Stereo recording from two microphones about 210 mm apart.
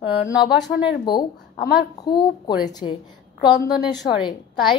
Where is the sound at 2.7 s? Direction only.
20° left (ahead or behind).